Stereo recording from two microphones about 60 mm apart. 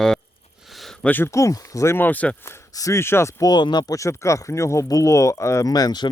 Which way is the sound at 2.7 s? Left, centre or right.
Left.